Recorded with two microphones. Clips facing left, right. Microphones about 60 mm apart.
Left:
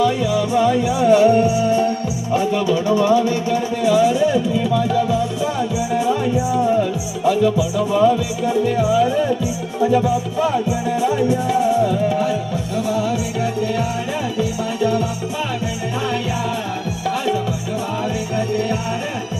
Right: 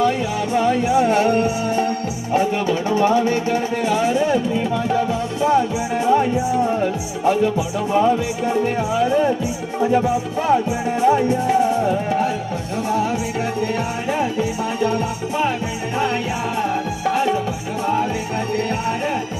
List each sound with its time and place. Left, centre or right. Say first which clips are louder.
0.0 s music: left 2 dB; right